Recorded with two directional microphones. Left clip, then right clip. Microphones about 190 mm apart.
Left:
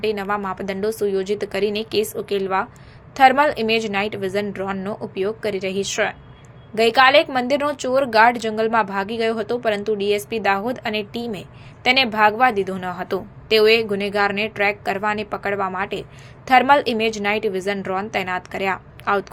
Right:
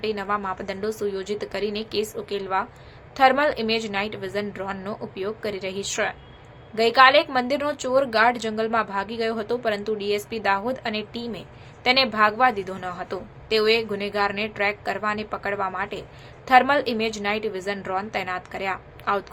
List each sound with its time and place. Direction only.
0.0 s a woman's voice: 15° left (ahead or behind)